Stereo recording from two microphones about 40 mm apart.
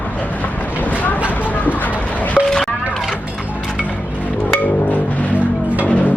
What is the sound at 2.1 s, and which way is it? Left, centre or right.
Music, left.